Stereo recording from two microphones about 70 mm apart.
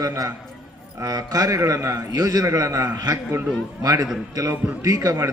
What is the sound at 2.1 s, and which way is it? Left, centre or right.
Speech, right.